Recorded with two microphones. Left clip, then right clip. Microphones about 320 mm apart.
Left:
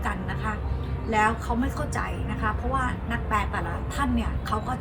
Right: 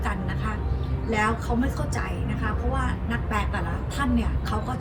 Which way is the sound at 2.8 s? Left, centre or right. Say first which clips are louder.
Left 1 dB; centre.